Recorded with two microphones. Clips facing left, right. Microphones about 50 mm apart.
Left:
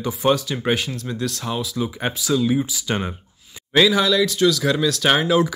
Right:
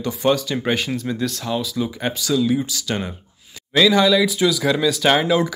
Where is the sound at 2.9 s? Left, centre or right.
Centre.